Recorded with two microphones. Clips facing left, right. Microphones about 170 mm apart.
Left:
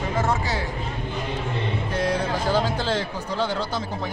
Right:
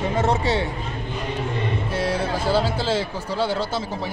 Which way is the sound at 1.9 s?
10° right (ahead or behind).